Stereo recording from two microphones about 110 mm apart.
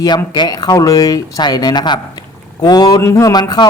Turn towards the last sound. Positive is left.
turn(degrees=40)  # may be behind; listen again after turning